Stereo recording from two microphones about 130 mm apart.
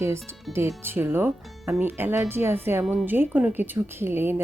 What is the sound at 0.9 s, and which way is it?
A woman's voice, 15° right (ahead or behind).